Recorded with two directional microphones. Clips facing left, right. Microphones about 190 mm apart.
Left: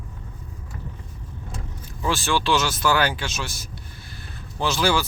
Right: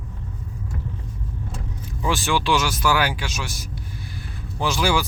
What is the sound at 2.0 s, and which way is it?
Speech, 15° right (ahead or behind).